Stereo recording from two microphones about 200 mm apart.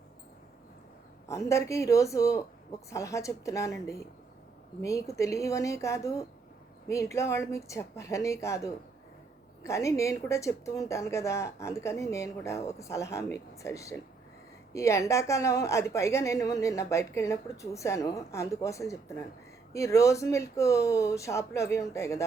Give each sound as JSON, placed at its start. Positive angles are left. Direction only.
{"t": 1.3, "sound": "a woman's voice", "side_deg": 15}